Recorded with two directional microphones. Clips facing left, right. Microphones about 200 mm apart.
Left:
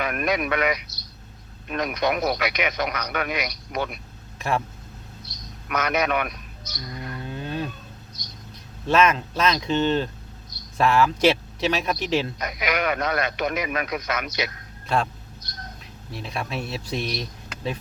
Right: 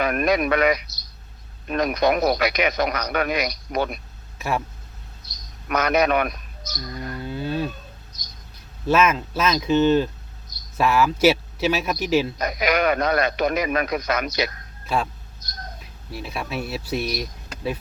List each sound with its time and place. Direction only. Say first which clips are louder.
0.0 s speech: right 4 dB; 40° right (ahead or behind)
4.4 s vehicle: even; 5° right (ahead or behind)
5.6 s a man's voice: right 4 dB; 35° right (ahead or behind)
7.3 s cattle: right 4 dB; 10° right (ahead or behind)
8.9 s speech: right 1 dB; 5° right (ahead or behind)
12.4 s speech: right 4 dB; 40° right (ahead or behind)
14.9 s a man's voice: even; 5° right (ahead or behind)
16.1 s speech: right 1 dB; 5° right (ahead or behind)